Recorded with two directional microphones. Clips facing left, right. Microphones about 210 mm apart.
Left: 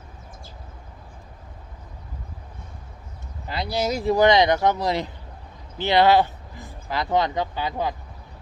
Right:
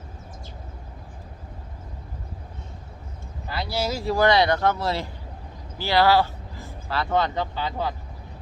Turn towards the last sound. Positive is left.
turn(degrees=15)  # may be behind; listen again after turning